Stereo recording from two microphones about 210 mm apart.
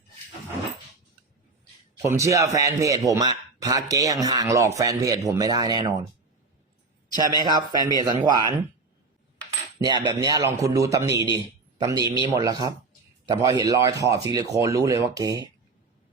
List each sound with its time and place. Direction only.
2.0 s a man's voice: 15° right (ahead or behind)
7.2 s speech: 20° right (ahead or behind)
9.8 s a man's voice: 20° right (ahead or behind)